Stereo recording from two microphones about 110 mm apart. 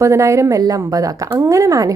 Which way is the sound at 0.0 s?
25° right (ahead or behind).